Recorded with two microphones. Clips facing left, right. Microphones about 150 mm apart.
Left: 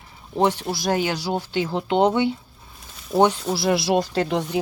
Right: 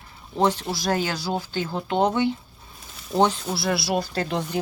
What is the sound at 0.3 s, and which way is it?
Speech, 15° left (ahead or behind).